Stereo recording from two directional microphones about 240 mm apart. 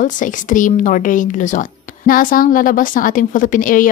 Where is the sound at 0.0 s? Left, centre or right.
Left.